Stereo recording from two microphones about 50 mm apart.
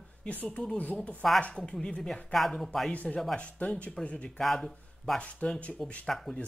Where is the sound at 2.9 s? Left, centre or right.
Left.